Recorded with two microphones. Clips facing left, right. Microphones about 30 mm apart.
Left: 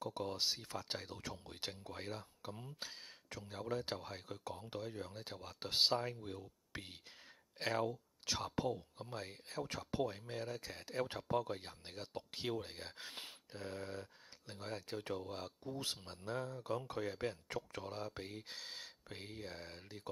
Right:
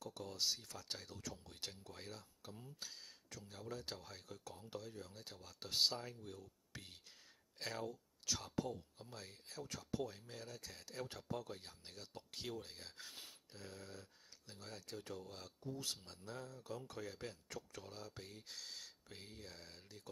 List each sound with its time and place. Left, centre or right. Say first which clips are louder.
0.0 s speech: left 4 dB; left